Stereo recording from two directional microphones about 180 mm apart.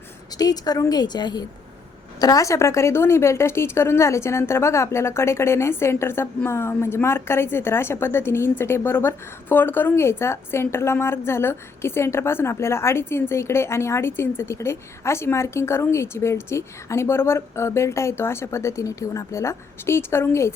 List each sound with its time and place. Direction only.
0.3 s a woman's voice: 20° left (ahead or behind)